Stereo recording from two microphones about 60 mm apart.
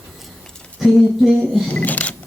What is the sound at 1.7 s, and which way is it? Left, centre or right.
Speech, left.